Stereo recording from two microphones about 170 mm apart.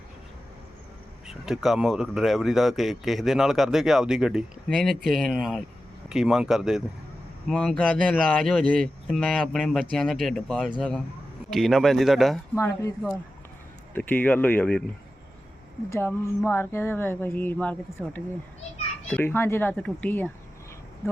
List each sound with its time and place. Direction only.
1.3 s speech: centre (ahead or behind)
12.5 s speech: 15° left (ahead or behind)
13.9 s speech: 10° left (ahead or behind)
15.9 s speech: 15° left (ahead or behind)